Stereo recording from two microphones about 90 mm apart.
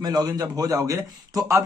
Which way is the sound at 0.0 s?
50° right (ahead or behind).